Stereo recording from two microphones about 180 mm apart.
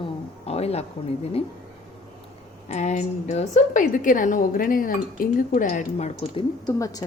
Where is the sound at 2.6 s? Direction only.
40° left (ahead or behind).